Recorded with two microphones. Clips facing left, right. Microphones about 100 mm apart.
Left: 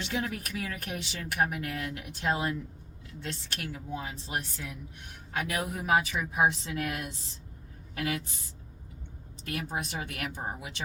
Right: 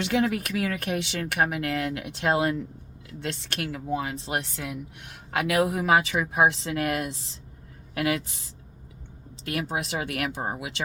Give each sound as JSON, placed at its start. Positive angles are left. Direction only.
{"t": 0.0, "sound": "a woman's voice", "side_deg": -70}
{"t": 9.4, "sound": "speech", "side_deg": -90}